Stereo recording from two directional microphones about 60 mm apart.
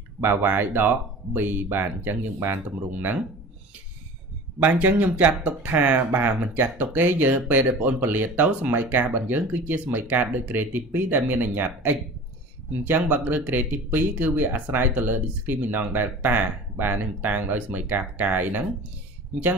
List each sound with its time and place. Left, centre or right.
0.2 s speech: right
4.6 s speech: right